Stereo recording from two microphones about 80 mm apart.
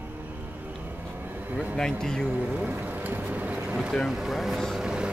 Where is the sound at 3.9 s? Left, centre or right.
Centre.